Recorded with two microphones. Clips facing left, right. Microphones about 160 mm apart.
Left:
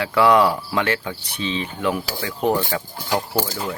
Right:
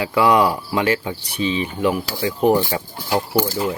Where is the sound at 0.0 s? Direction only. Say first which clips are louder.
Even; 10° right (ahead or behind).